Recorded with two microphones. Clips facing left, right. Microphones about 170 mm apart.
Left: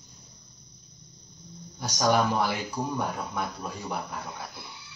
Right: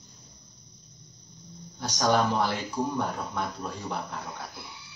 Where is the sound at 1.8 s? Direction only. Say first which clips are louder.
Even; 10° left (ahead or behind).